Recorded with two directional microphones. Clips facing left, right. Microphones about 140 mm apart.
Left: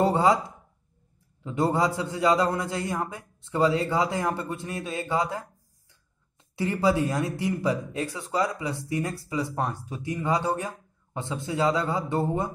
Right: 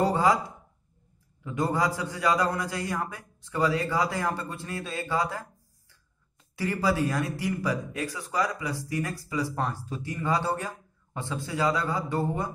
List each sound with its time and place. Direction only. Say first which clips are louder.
0.0 s speech: left 2 dB; 25° left (ahead or behind)
1.4 s a man's voice: left 3 dB; 25° left (ahead or behind)